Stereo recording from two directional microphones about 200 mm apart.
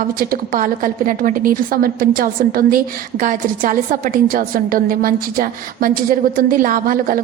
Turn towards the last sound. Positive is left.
turn(degrees=-45)  # may be behind; listen again after turning